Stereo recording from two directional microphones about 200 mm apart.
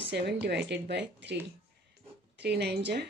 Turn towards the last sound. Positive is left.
turn(degrees=-60)  # may be behind; listen again after turning